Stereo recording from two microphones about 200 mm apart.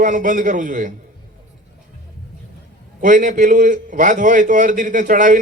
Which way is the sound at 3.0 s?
40° right (ahead or behind).